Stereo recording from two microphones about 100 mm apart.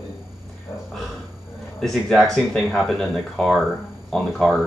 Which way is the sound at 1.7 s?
5° left (ahead or behind).